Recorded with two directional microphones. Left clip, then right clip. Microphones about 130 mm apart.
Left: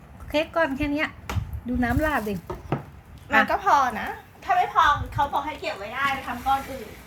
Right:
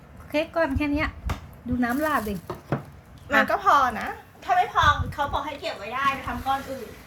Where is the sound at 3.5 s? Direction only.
15° right (ahead or behind).